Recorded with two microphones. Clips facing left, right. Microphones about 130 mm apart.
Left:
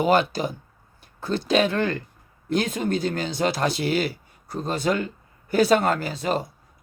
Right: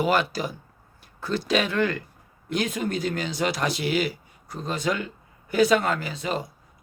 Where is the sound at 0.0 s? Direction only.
30° left (ahead or behind).